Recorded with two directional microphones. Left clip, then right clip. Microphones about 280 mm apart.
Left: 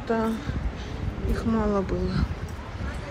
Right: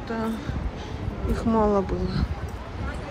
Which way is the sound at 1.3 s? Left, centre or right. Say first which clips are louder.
Right 4 dB; centre.